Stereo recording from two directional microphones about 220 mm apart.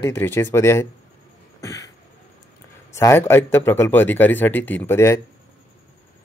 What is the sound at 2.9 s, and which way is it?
Speech, 10° left (ahead or behind).